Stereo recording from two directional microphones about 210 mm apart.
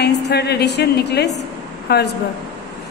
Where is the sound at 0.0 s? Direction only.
50° left (ahead or behind).